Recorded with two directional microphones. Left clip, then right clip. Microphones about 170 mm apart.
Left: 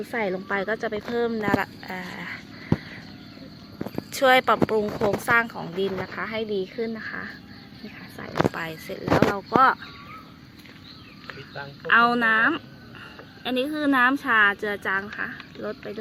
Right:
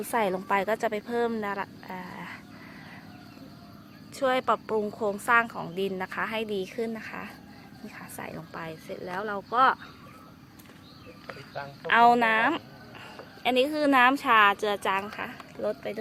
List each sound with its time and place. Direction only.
0.1 s a woman's voice: 20° right (ahead or behind)
1.1 s speech: 10° right (ahead or behind)
1.5 s a woman's voice: centre (ahead or behind)
4.1 s a woman's voice: centre (ahead or behind); by 7.3 s 25° right (ahead or behind)
8.5 s a woman's voice: centre (ahead or behind)
11.9 s a woman's voice: 5° right (ahead or behind)